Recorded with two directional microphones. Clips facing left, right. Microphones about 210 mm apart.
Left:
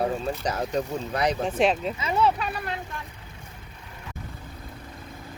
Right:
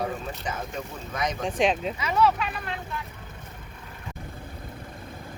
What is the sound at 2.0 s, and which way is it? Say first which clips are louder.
Speech: even; 30° left (ahead or behind).